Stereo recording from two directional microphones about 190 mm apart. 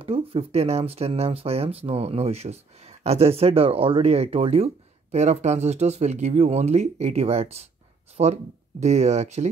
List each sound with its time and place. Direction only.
0.0 s speech: 30° right (ahead or behind)